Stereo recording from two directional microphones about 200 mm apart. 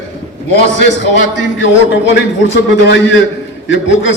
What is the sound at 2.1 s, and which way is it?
A man's voice, 60° left (ahead or behind).